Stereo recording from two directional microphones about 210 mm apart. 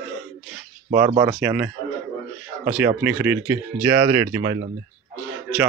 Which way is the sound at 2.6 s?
10° right (ahead or behind).